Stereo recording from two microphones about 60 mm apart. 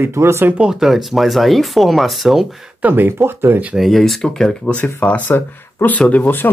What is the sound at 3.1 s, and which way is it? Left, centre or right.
Speech, right.